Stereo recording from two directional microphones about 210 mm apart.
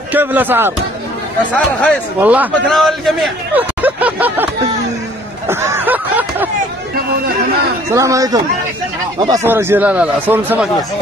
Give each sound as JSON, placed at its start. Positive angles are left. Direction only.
{"t": 0.1, "sound": "speech", "side_deg": -10}
{"t": 1.5, "sound": "speech", "side_deg": 5}
{"t": 2.1, "sound": "speech", "side_deg": -5}
{"t": 5.5, "sound": "a sound", "side_deg": -10}
{"t": 7.9, "sound": "speech", "side_deg": -15}